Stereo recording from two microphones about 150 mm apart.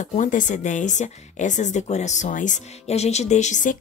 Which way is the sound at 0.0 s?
55° left (ahead or behind).